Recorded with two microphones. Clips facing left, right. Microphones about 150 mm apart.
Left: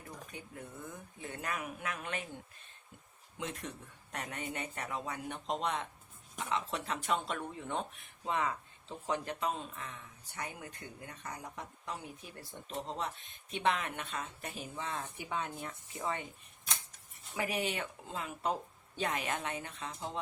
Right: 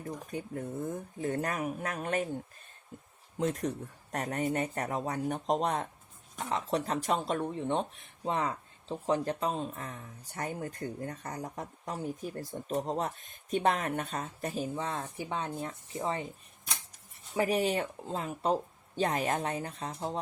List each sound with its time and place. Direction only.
0.0 s speech: 40° right (ahead or behind)
3.3 s speech: 40° right (ahead or behind)
17.3 s speech: 35° right (ahead or behind)